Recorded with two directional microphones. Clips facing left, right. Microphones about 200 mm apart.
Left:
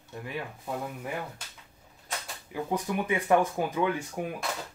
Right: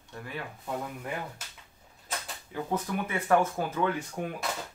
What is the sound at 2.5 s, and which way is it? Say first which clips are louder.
Speech: left 1 dB; 15° left (ahead or behind).